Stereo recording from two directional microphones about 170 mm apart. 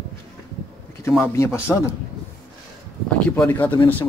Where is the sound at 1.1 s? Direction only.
15° left (ahead or behind).